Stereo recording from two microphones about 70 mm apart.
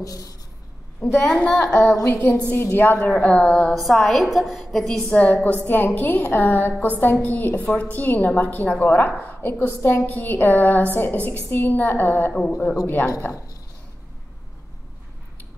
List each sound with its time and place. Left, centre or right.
0.0 s speech: left
1.2 s a woman's voice: centre
1.6 s a woman's voice: left
3.7 s a woman's voice: centre
5.1 s a woman's voice: left
12.4 s a woman's voice: centre
13.2 s a woman's voice: left